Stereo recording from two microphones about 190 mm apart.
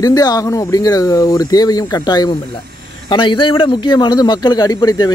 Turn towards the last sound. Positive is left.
turn(degrees=20)  # may be behind; listen again after turning